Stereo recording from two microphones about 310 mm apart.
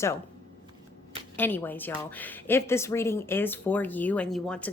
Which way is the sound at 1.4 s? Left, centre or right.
Centre.